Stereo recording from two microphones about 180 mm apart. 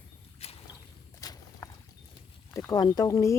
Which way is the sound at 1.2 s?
20° left (ahead or behind).